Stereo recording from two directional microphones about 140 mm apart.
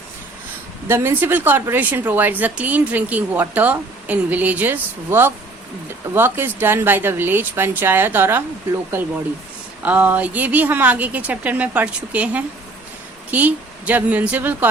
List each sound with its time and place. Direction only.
0.9 s a woman's voice: 15° right (ahead or behind)